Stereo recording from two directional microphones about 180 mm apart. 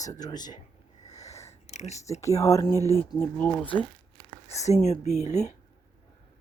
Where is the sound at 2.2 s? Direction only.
20° left (ahead or behind).